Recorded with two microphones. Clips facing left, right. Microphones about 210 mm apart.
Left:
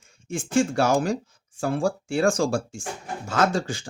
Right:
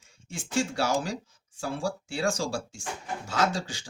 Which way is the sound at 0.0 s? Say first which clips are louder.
Left 10 dB; 50° left (ahead or behind).